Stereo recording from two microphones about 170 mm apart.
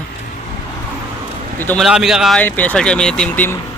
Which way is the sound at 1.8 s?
Centre (ahead or behind).